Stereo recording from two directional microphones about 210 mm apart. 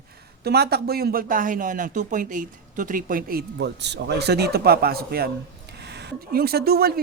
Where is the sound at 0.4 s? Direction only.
50° right (ahead or behind).